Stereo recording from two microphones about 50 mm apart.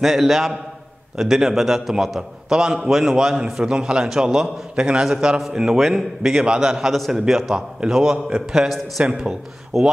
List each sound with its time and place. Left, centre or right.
0.0 s a man's voice: centre
6.9 s a man's voice: centre
8.6 s a man's voice: centre
9.0 s a man's voice: centre